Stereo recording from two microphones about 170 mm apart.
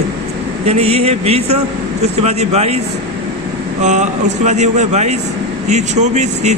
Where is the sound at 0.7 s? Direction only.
40° right (ahead or behind).